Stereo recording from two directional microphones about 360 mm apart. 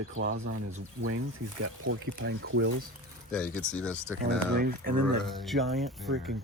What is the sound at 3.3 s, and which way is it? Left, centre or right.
Speech, centre.